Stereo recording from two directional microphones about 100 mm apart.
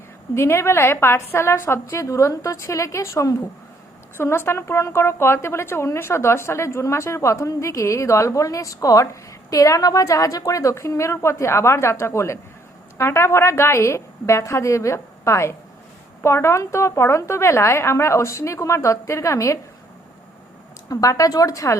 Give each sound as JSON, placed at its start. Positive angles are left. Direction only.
{"t": 0.3, "sound": "a woman's voice", "side_deg": 25}
{"t": 20.9, "sound": "a woman's voice", "side_deg": 35}